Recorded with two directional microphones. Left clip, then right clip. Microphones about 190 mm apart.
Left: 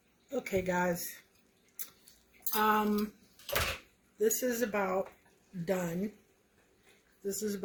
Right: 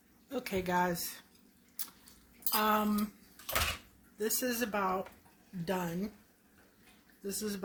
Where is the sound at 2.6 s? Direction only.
70° right (ahead or behind).